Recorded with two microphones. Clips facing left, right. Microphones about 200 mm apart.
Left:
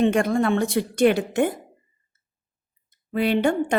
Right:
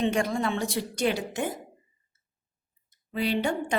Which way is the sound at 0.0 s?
55° left (ahead or behind).